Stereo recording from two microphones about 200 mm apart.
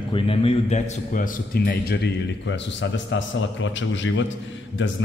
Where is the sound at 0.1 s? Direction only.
30° left (ahead or behind).